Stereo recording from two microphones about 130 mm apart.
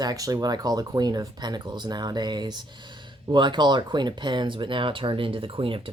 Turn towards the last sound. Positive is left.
turn(degrees=-45)  # may be behind; listen again after turning